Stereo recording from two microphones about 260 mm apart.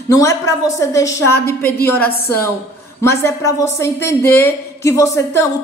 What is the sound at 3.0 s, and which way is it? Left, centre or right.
A woman's voice, centre.